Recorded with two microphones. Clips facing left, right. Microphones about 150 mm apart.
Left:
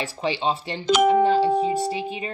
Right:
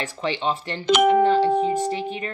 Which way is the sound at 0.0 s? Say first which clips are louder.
Left 1 dB; 10° left (ahead or behind).